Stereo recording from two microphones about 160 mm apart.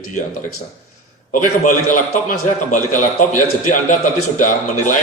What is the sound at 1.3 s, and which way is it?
A man's voice, 55° left (ahead or behind).